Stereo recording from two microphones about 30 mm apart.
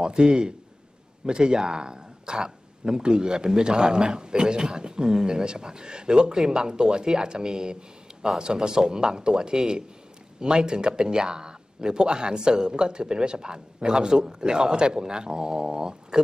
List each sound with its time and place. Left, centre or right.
0.0 s a man's voice: right
3.8 s speech: centre